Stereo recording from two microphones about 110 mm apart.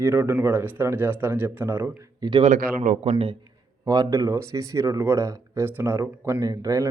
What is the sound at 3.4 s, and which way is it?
Speech, 35° right (ahead or behind).